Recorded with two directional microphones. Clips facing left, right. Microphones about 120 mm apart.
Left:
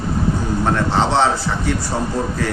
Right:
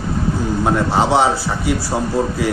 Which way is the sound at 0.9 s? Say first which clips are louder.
Right 2 dB; 10° right (ahead or behind).